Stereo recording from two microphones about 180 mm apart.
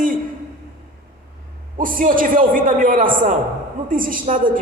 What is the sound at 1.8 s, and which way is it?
A man's voice, 50° right (ahead or behind).